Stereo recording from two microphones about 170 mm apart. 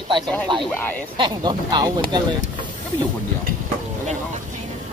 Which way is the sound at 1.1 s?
25° right (ahead or behind).